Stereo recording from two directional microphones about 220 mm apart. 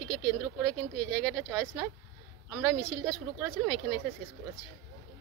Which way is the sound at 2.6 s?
Centre (ahead or behind).